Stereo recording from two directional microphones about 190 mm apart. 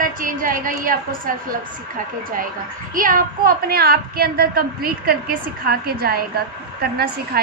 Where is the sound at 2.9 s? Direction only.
45° right (ahead or behind).